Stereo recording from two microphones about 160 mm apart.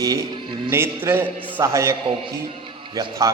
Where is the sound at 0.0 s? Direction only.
30° right (ahead or behind).